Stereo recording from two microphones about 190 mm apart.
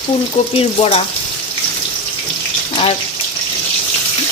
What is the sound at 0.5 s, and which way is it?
Stir, 30° left (ahead or behind).